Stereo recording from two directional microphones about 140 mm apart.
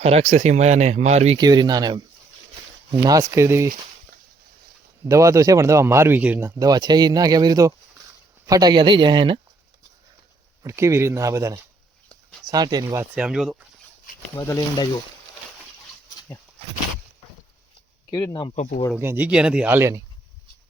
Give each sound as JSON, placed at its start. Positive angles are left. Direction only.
{"t": 0.0, "sound": "speech", "side_deg": -50}
{"t": 1.4, "sound": "speech", "side_deg": -30}
{"t": 5.0, "sound": "speech", "side_deg": -20}
{"t": 6.6, "sound": "speech", "side_deg": -30}
{"t": 10.6, "sound": "speech", "side_deg": -20}
{"t": 13.0, "sound": "speech", "side_deg": -10}
{"t": 14.3, "sound": "speech", "side_deg": 25}
{"t": 18.1, "sound": "speech", "side_deg": 20}
{"t": 18.5, "sound": "speech", "side_deg": 60}
{"t": 18.9, "sound": "speech", "side_deg": -15}